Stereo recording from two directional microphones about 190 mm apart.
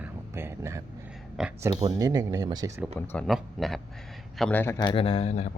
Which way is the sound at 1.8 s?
20° right (ahead or behind).